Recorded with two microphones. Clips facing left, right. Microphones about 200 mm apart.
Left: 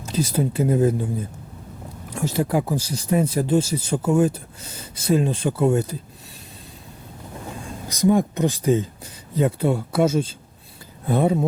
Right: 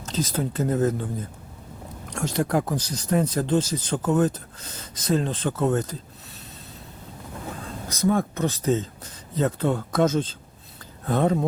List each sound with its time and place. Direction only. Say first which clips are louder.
0.0 s speech: left 4 dB; 10° left (ahead or behind)
7.9 s speech: left 4 dB; 15° left (ahead or behind)